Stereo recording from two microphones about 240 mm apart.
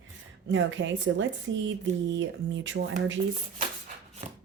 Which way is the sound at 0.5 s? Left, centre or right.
Right.